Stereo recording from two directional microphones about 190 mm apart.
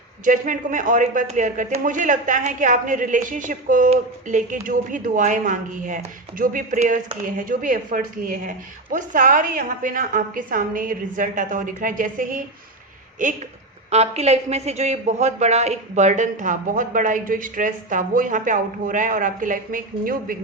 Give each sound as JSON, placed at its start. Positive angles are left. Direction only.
{"t": 0.3, "sound": "a man's voice", "side_deg": -45}